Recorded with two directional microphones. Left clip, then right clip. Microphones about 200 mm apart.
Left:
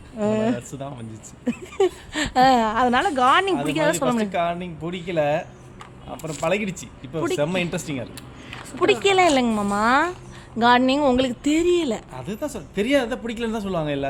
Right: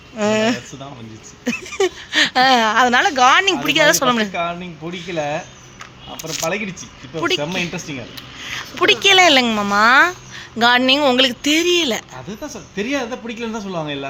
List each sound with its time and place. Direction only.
0.2 s a sound: centre (ahead or behind)
1.5 s speech: 10° left (ahead or behind)
4.3 s a man's voice: 20° left (ahead or behind)
6.1 s a man's voice: 15° left (ahead or behind)
8.4 s speech: 5° left (ahead or behind)
12.3 s a man's voice: 25° left (ahead or behind)